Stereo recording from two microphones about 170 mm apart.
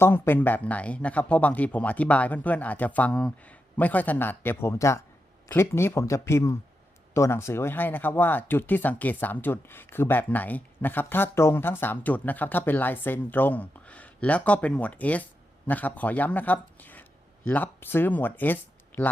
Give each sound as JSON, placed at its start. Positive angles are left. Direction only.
{"t": 0.0, "sound": "speech", "side_deg": 10}